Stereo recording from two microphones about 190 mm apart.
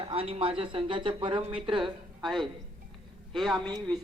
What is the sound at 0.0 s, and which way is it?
A man's voice, 30° right (ahead or behind).